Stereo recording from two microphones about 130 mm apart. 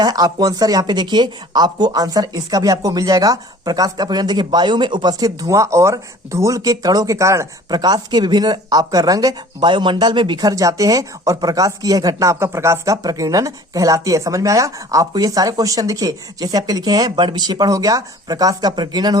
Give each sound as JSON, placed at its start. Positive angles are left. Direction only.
{"t": 0.0, "sound": "speech", "side_deg": -30}